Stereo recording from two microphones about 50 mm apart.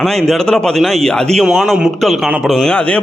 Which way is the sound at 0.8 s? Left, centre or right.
Centre.